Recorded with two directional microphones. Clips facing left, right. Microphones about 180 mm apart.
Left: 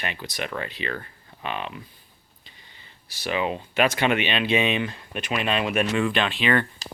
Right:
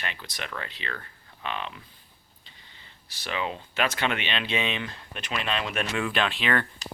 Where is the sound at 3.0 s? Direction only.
10° left (ahead or behind).